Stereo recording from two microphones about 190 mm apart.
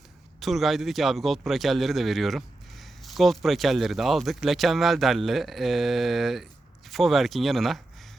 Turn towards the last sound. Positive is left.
turn(degrees=0)  # may be behind; listen again after turning